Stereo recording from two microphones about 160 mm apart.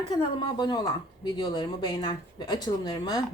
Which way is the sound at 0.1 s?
25° left (ahead or behind).